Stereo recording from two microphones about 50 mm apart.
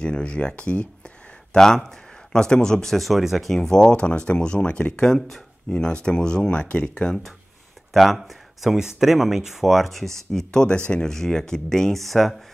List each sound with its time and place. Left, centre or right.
0.0 s speech: centre
1.6 s speech: centre
3.9 s speech: left
7.9 s speech: centre; by 11.1 s left
11.1 s speech: centre